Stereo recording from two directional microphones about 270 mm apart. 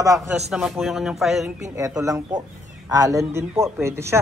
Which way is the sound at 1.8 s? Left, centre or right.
Centre.